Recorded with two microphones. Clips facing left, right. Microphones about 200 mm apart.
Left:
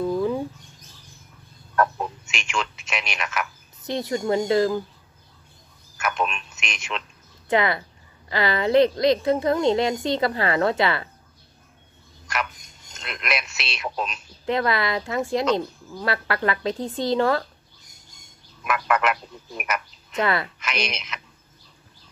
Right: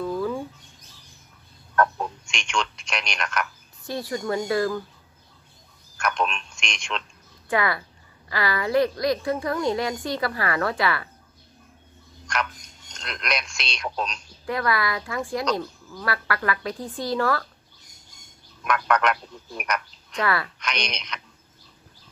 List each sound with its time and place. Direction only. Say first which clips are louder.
0.0 s bird: left 3 dB; 20° left (ahead or behind)
1.8 s a man's voice: even; 5° left (ahead or behind)
3.8 s a woman's voice: left 3 dB; 20° left (ahead or behind)
5.9 s a man's voice: even; 5° left (ahead or behind)
7.4 s a woman's voice: left 3 dB; 20° left (ahead or behind)
12.3 s speech: even; 5° left (ahead or behind)
14.4 s a woman's voice: left 2 dB; 25° left (ahead or behind)
18.6 s speech: even; 5° left (ahead or behind)
20.2 s a woman's voice: left 2 dB; 20° left (ahead or behind)
20.5 s a woman's voice: left 2 dB; 5° left (ahead or behind)